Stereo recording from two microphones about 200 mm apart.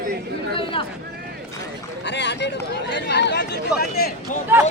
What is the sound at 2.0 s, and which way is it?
Speech, 60° left (ahead or behind).